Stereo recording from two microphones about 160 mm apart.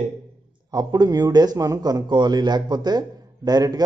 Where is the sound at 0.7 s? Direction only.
25° right (ahead or behind).